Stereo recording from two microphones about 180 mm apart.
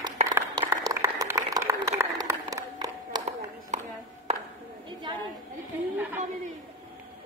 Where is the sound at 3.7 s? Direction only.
40° right (ahead or behind).